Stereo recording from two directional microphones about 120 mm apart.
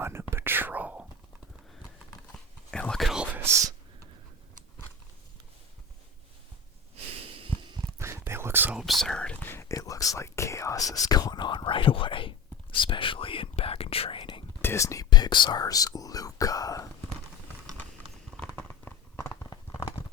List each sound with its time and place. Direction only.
0.0 s whispering: 20° right (ahead or behind)
2.6 s whispering: 5° left (ahead or behind)
3.3 s whispering: 20° right (ahead or behind)
7.2 s a sound: 50° right (ahead or behind)
7.9 s whispering: 20° right (ahead or behind)
8.8 s speech: centre (ahead or behind)
9.5 s whispering: 25° left (ahead or behind); by 14.4 s 45° left (ahead or behind)
14.6 s whispering: 20° left (ahead or behind)
18.3 s a sound: 10° left (ahead or behind)
19.4 s a sound: 25° left (ahead or behind)